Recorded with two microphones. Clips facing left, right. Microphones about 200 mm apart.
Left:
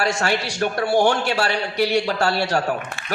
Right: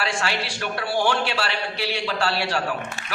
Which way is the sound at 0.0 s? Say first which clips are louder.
Left 5 dB; 45° left (ahead or behind).